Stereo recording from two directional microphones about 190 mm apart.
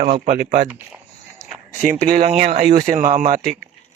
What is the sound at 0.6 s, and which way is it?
Speech, 10° right (ahead or behind).